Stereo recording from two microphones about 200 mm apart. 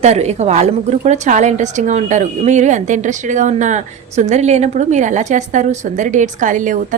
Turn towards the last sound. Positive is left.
turn(degrees=-40)  # may be behind; listen again after turning